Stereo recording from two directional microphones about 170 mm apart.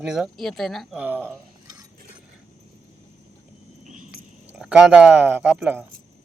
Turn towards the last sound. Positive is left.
turn(degrees=-5)  # may be behind; listen again after turning